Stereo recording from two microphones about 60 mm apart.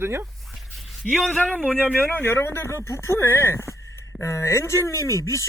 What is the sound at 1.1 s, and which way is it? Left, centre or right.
Speech, centre.